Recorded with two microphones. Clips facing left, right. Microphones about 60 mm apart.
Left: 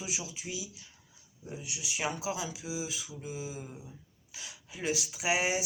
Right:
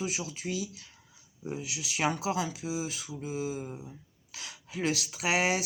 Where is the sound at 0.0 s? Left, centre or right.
Right.